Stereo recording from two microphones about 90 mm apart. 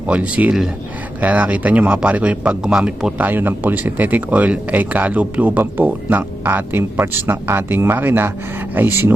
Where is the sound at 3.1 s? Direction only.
20° right (ahead or behind).